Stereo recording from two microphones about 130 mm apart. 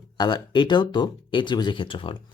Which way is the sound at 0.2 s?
35° left (ahead or behind).